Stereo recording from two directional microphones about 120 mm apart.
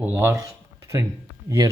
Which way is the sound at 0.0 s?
15° right (ahead or behind).